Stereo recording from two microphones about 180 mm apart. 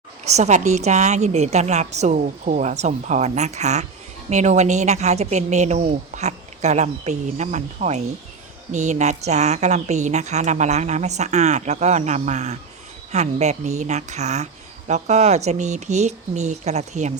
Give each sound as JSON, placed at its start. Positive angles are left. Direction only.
{"t": 0.3, "sound": "a woman's voice", "side_deg": -40}